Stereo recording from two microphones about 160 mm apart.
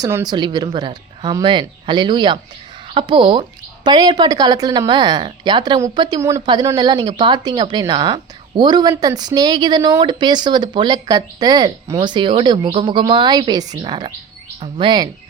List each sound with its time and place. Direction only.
0.0 s a woman's voice: 25° right (ahead or behind)
6.4 s a woman's voice: 30° right (ahead or behind)